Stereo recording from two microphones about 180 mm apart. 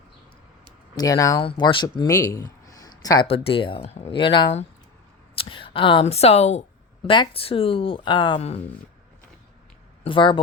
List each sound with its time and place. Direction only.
0.9 s speech: 20° left (ahead or behind)
3.2 s speech: 30° left (ahead or behind)
10.0 s speech: 30° left (ahead or behind)